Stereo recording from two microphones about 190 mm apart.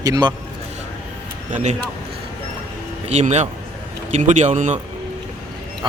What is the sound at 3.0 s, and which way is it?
A man's voice, 35° right (ahead or behind).